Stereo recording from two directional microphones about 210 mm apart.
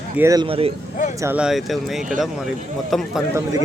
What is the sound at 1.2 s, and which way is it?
Speech, 10° right (ahead or behind).